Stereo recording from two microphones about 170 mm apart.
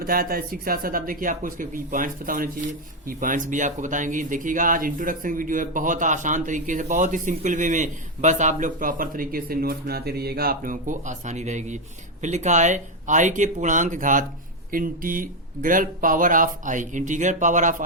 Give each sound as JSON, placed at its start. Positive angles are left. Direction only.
{"t": 0.0, "sound": "speech", "side_deg": -60}